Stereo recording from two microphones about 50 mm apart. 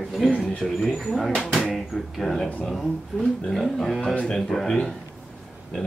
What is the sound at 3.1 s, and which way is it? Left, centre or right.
Speech, centre.